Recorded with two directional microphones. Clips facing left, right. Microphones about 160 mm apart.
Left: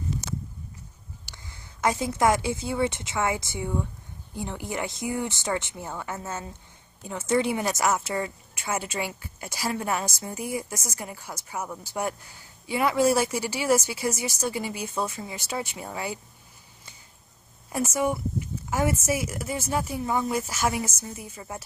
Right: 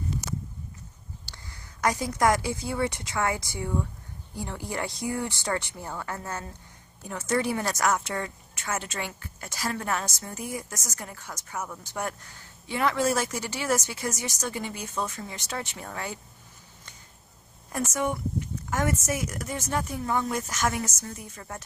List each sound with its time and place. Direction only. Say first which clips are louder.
1.3 s a woman's voice: even; 20° left (ahead or behind)
17.7 s a woman's voice: left 3 dB; 10° left (ahead or behind)